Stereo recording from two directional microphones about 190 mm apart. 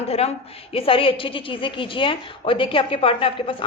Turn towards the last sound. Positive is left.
turn(degrees=30)  # may be behind; listen again after turning